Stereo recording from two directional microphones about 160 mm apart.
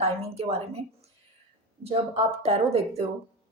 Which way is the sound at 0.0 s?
40° right (ahead or behind).